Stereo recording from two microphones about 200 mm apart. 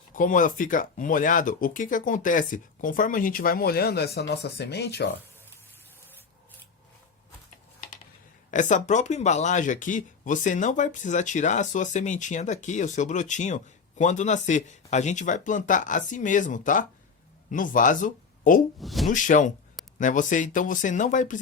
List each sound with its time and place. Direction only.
0.1 s speech: 40° left (ahead or behind); by 5.1 s 55° left (ahead or behind)
8.4 s speech: 40° left (ahead or behind)
18.8 s speech: centre (ahead or behind)
19.1 s speech: 40° left (ahead or behind)